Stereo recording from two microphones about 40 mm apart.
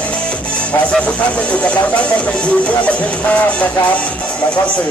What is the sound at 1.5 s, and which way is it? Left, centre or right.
Speech, left.